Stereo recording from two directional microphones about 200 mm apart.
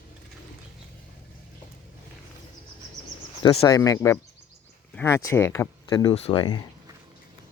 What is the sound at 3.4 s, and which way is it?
Speech, 25° left (ahead or behind).